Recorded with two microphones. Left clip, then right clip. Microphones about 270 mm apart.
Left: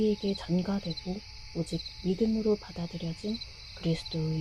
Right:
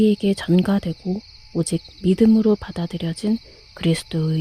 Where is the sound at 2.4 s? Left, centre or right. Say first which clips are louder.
Right 9 dB; right.